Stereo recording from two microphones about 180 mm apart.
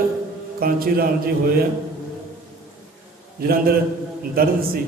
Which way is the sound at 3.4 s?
55° right (ahead or behind).